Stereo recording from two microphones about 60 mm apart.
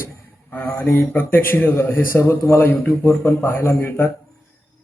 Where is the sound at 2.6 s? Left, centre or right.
Left.